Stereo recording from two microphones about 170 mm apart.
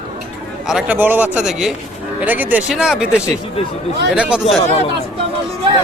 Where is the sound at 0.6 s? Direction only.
5° right (ahead or behind).